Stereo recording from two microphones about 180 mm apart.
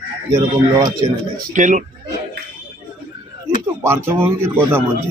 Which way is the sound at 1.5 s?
45° right (ahead or behind).